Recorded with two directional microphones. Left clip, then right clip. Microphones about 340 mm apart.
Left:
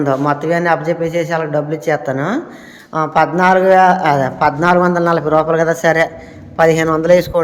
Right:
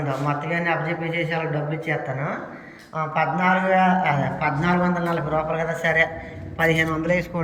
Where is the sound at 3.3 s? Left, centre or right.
Centre.